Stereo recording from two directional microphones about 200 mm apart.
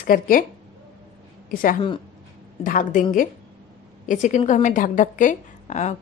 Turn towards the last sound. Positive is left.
turn(degrees=35)  # may be behind; listen again after turning